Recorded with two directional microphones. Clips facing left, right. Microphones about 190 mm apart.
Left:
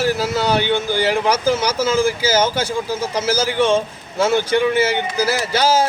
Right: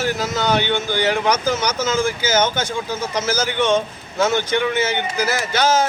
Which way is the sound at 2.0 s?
30° left (ahead or behind).